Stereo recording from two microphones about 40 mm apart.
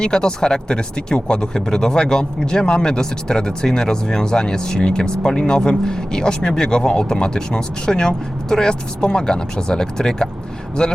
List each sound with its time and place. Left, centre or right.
0.0 s speech: left